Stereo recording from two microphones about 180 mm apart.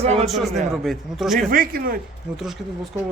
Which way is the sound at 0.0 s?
35° right (ahead or behind).